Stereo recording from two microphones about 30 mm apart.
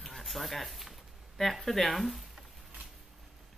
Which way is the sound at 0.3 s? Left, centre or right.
Centre.